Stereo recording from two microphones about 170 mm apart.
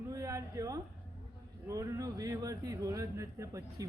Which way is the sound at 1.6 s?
20° right (ahead or behind).